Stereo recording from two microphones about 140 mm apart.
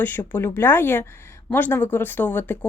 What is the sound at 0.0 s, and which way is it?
Speech, 15° left (ahead or behind).